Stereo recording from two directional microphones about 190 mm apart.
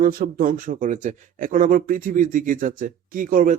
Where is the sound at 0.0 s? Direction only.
50° right (ahead or behind).